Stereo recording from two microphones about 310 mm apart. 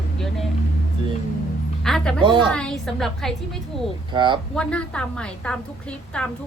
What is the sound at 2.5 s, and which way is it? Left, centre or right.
Speech, centre.